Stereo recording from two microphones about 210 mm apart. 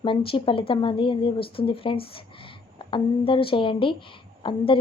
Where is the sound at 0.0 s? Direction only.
25° left (ahead or behind).